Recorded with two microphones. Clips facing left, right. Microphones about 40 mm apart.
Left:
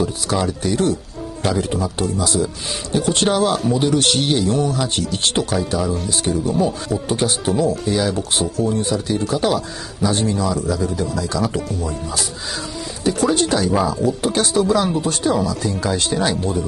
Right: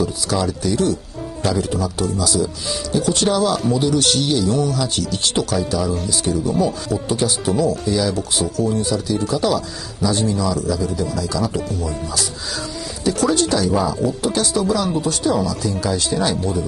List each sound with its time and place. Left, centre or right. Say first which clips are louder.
0.0 s a man's voice: even; left
6.3 s speech: even; centre
6.6 s a man's voice: even; left
8.4 s speech: even; centre
8.7 s a man's voice: even; left
13.0 s speech: even; left
14.2 s a man's voice: left 2 dB; left